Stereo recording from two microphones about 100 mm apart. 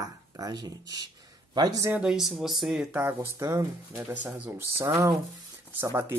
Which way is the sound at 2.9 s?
25° right (ahead or behind).